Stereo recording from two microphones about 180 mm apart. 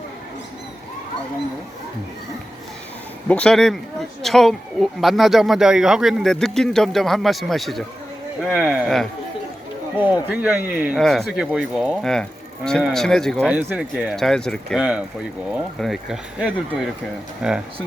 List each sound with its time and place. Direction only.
3.2 s speech: 5° left (ahead or behind)
13.5 s speech: 10° right (ahead or behind)